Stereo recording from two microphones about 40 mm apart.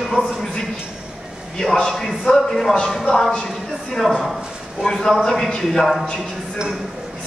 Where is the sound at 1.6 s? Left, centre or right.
Centre.